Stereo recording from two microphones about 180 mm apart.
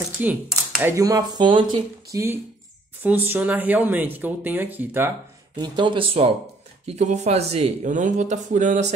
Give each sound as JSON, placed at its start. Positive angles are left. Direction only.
{"t": 0.2, "sound": "speech", "side_deg": -10}
{"t": 5.6, "sound": "speech", "side_deg": -25}